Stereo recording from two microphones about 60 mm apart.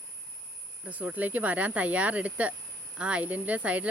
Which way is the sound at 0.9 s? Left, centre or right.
Right.